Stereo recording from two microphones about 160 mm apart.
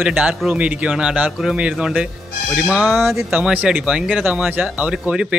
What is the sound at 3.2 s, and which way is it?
A man's voice, 5° right (ahead or behind).